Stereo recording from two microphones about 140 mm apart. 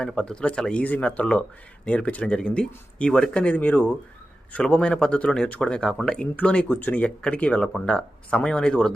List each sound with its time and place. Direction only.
0.0 s speech: 5° left (ahead or behind)